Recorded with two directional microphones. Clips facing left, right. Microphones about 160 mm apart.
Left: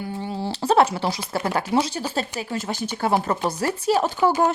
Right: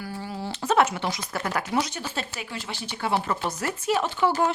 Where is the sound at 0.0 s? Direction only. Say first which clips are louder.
Left 5 dB; 25° left (ahead or behind).